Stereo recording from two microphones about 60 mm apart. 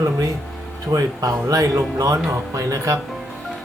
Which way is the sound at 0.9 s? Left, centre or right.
Right.